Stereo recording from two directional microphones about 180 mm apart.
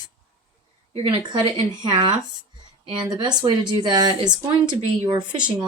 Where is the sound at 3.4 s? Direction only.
25° right (ahead or behind).